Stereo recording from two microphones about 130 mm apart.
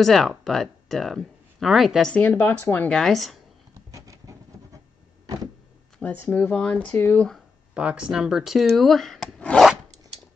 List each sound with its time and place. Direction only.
0.0 s speech: centre (ahead or behind)
3.9 s vehicle: 25° right (ahead or behind)
5.9 s speech: 15° left (ahead or behind)
7.7 s speech: 10° right (ahead or behind)